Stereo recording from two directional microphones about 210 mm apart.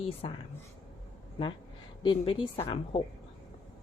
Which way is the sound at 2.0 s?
25° left (ahead or behind).